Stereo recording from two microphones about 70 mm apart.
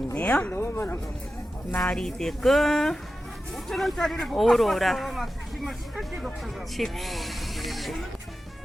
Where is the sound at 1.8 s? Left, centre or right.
Centre.